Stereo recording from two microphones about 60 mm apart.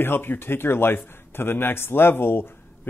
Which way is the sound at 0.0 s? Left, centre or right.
Left.